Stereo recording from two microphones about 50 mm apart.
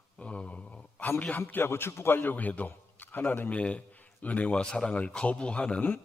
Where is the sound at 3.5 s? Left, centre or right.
Left.